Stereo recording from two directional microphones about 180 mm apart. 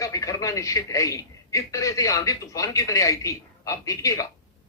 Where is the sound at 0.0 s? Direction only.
20° left (ahead or behind).